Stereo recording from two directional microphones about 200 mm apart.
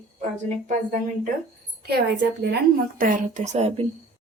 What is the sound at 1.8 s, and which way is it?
A woman's voice, 55° right (ahead or behind).